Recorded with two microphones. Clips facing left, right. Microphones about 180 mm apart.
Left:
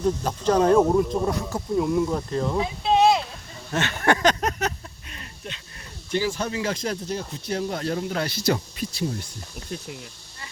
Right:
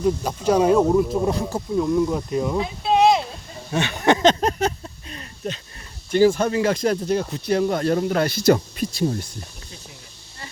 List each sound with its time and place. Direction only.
0.0 s speech: 10° right (ahead or behind)
0.8 s cricket: centre (ahead or behind)
1.3 s speech: 30° right (ahead or behind)
1.7 s cricket: centre (ahead or behind)
2.3 s speech: 10° right (ahead or behind)
3.7 s a sound: 15° right (ahead or behind); by 5.5 s 35° right (ahead or behind)
6.1 s speech: 50° right (ahead or behind)
9.6 s speech: 65° left (ahead or behind)